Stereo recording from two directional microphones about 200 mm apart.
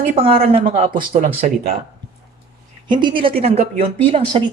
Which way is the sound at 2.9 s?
25° right (ahead or behind).